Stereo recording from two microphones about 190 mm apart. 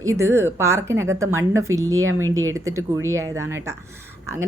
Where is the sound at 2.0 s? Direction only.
90° right.